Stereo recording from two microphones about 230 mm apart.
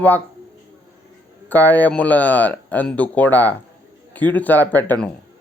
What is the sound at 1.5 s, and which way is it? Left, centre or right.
A man's voice, centre.